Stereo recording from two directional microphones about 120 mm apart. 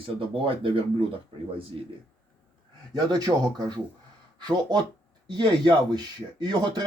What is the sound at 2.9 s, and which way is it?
Speech, 35° right (ahead or behind).